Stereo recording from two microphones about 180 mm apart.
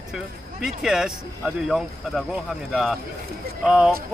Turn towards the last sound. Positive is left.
turn(degrees=-5)  # may be behind; listen again after turning